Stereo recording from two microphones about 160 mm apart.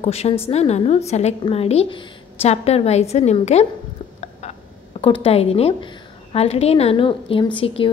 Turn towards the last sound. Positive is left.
turn(degrees=30)  # may be behind; listen again after turning